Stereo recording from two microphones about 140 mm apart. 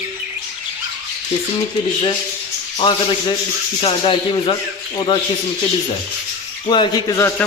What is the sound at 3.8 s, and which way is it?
Speech, 40° left (ahead or behind).